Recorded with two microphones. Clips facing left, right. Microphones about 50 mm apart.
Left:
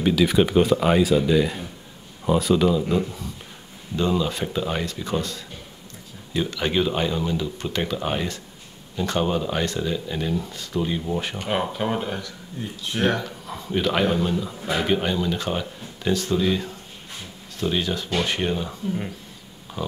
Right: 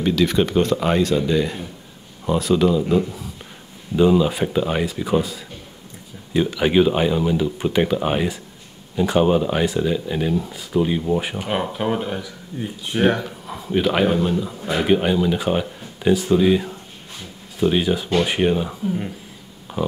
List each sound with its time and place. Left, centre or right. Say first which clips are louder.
0.0 s speech: even; centre
12.5 s speech: right 4 dB; centre
19.7 s a sound: right 6 dB; centre